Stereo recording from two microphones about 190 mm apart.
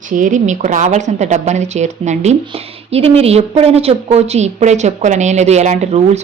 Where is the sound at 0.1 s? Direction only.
40° right (ahead or behind).